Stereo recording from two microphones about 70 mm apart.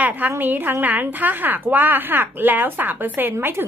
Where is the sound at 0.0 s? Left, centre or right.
Right.